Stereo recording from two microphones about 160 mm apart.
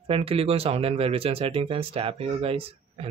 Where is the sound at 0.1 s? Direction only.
35° right (ahead or behind).